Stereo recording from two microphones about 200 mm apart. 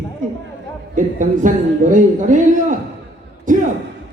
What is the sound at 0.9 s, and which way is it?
A man's voice, 40° right (ahead or behind).